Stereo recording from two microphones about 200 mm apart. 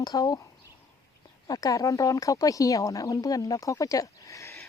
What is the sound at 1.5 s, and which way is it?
Speech, 20° left (ahead or behind).